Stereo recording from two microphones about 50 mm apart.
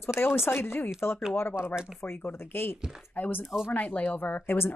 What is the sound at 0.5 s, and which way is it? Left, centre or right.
Speech, left.